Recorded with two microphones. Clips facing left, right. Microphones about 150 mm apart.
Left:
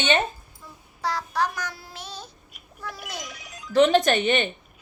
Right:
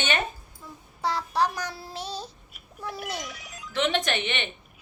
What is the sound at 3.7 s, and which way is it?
Speech, 40° left (ahead or behind).